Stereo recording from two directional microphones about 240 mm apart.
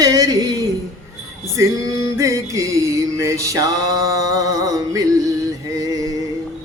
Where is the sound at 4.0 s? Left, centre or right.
Centre.